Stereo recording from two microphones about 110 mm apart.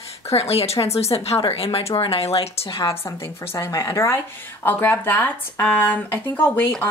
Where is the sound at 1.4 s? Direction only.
60° left (ahead or behind).